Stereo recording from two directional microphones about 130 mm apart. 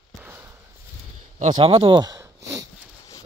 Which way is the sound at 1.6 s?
45° right (ahead or behind).